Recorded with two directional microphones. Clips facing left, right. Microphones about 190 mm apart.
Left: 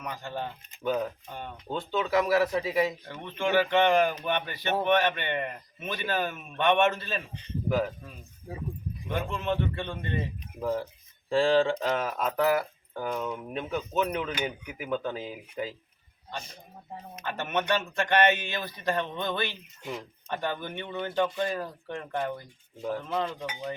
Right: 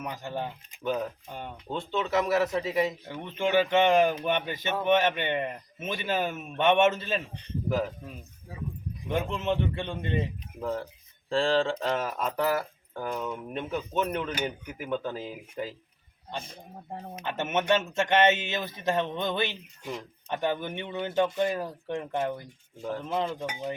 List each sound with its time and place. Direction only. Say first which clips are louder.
0.0 s speech: right 1 dB; 20° right (ahead or behind)
0.8 s speech: left 1 dB; 5° left (ahead or behind)
1.3 s speech: right 1 dB; 15° right (ahead or behind)
1.7 s speech: left 1 dB; 5° left (ahead or behind)
3.1 s speech: right 1 dB; 15° right (ahead or behind)
9.0 s speech: right 2 dB; 20° right (ahead or behind)
10.6 s speech: left 2 dB; 5° left (ahead or behind)
16.4 s a man's voice: right 3 dB; 55° right (ahead or behind)
17.2 s speech: right 2 dB; 20° right (ahead or behind)
22.8 s speech: left 1 dB; 5° left (ahead or behind)
23.0 s speech: right 1 dB; 15° right (ahead or behind)